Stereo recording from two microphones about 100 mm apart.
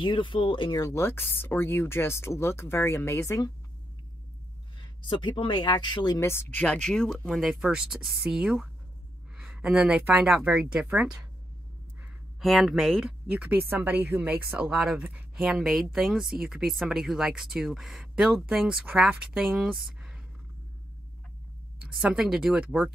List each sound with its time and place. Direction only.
0.0 s speech: 55° left (ahead or behind)
0.7 s speech: 30° left (ahead or behind)
4.7 s speech: 50° left (ahead or behind)
6.1 s speech: 25° left (ahead or behind)
6.6 s speech: 10° left (ahead or behind); by 11.1 s 10° right (ahead or behind)
12.4 s speech: centre (ahead or behind)
13.3 s speech: 15° right (ahead or behind)
22.0 s speech: 10° right (ahead or behind)